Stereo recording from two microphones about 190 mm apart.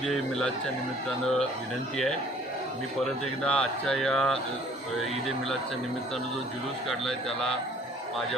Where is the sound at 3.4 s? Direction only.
5° left (ahead or behind).